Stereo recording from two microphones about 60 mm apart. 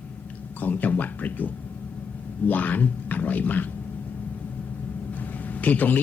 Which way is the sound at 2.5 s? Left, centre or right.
Left.